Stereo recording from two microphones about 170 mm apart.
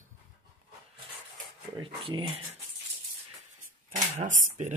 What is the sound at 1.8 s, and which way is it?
Speech, 30° right (ahead or behind).